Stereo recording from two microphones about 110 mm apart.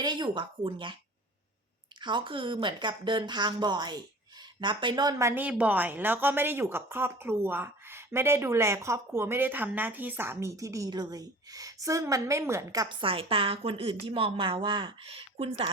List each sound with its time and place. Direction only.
0.0 s speech: 45° right (ahead or behind)
2.0 s speech: 45° right (ahead or behind)
5.2 s a woman's voice: 15° right (ahead or behind)
13.0 s a woman's voice: 55° right (ahead or behind)